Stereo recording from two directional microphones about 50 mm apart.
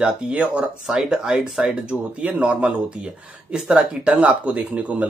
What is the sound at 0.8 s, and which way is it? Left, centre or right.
Speech, centre.